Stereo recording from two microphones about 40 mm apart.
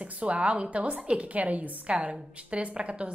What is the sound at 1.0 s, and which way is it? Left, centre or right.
Speech, right.